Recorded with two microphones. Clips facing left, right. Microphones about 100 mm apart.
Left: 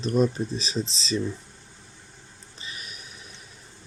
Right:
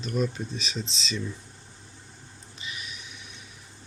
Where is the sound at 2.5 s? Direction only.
35° left (ahead or behind).